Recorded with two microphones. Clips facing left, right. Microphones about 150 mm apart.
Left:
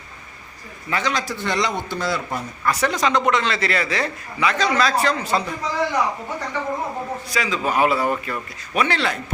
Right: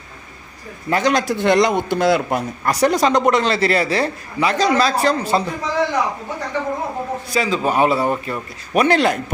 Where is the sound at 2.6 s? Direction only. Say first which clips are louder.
Right 4 dB; 40° right (ahead or behind).